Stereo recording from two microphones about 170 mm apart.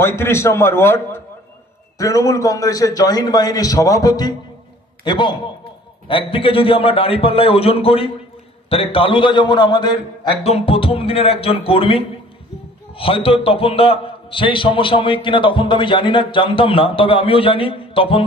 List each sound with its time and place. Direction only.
0.0 s a man's voice: 15° left (ahead or behind)
10.4 s a man's voice: 35° left (ahead or behind)